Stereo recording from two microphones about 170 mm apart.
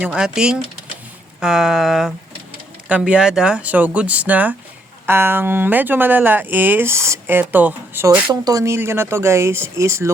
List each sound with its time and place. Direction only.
0.0 s speech: 5° right (ahead or behind)